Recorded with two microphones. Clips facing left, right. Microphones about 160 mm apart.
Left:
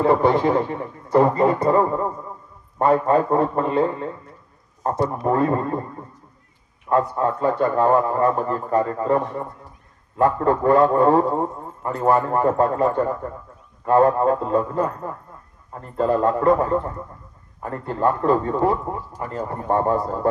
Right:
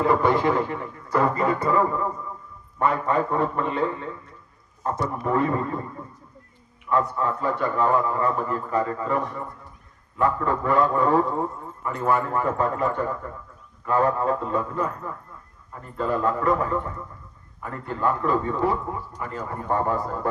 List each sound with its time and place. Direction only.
0.0 s a man's voice: 30° left (ahead or behind)
6.9 s a man's voice: 40° left (ahead or behind)